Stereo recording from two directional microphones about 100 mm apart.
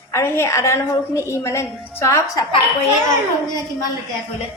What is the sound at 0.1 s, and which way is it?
A woman's voice, 25° left (ahead or behind).